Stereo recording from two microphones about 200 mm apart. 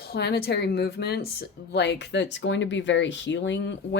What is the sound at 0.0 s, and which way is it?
Speech, 55° left (ahead or behind).